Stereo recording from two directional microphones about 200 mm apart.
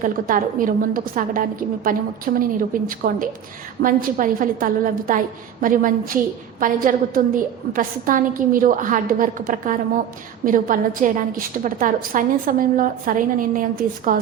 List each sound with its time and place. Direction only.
0.0 s a woman's voice: 40° right (ahead or behind)